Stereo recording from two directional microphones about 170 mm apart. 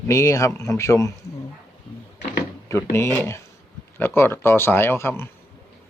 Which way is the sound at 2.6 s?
15° left (ahead or behind).